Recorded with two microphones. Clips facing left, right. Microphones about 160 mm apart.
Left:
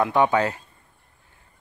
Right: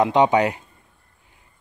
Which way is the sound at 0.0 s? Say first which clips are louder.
Right 3 dB; 20° right (ahead or behind).